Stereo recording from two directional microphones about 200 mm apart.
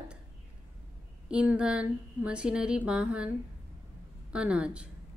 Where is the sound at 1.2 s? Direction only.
5° right (ahead or behind).